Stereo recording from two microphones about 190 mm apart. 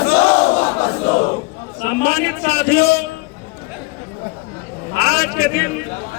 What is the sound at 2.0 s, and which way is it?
A man's voice, 65° left (ahead or behind).